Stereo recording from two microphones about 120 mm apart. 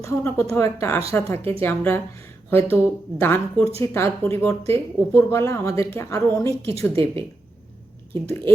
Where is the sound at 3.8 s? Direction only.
20° left (ahead or behind).